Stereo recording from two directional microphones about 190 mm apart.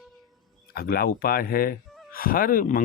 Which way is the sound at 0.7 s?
50° left (ahead or behind).